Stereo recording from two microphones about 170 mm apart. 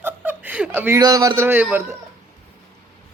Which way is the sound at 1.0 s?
20° right (ahead or behind).